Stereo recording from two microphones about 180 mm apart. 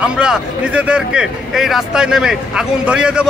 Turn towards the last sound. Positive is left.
turn(degrees=-5)  # may be behind; listen again after turning